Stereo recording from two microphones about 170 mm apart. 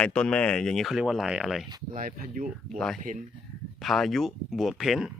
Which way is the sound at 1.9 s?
55° right (ahead or behind).